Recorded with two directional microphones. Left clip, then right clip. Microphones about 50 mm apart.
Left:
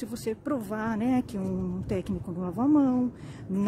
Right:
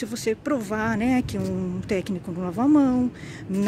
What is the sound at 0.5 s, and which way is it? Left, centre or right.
Speech, centre.